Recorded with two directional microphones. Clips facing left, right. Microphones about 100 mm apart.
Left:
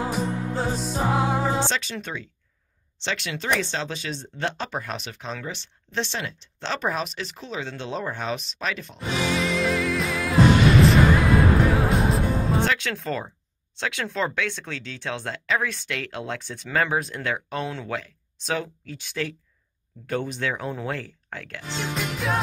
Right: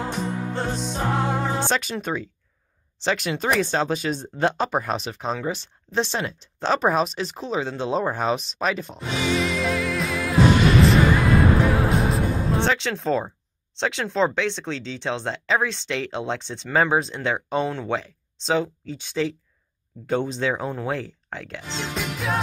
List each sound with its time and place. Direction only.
0.0 s music: centre (ahead or behind)
1.7 s speech: 45° right (ahead or behind)
8.9 s music: centre (ahead or behind)
12.7 s speech: 20° right (ahead or behind)
21.8 s music: centre (ahead or behind)